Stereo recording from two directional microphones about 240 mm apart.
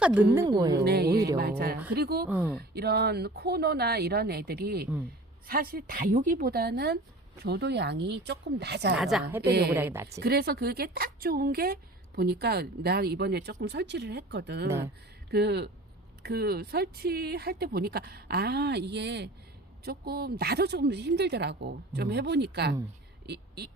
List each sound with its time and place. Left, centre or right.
0.0 s a woman's voice: centre
0.3 s a woman's voice: centre
0.8 s a woman's voice: right
1.1 s a woman's voice: centre
1.4 s a woman's voice: right
2.3 s a woman's voice: centre
2.6 s a woman's voice: right
9.0 s a woman's voice: centre
9.4 s a woman's voice: right
9.7 s a woman's voice: centre
10.2 s a woman's voice: right